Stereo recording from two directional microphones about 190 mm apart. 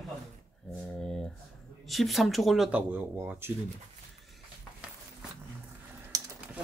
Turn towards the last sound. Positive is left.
turn(degrees=-20)  # may be behind; listen again after turning